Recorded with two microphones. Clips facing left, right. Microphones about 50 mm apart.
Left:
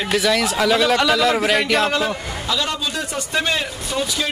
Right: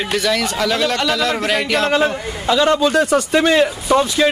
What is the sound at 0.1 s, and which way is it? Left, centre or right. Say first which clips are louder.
A man's voice: left 1 dB; centre.